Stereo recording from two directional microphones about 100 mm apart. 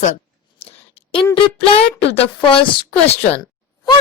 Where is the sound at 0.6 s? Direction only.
70° left (ahead or behind).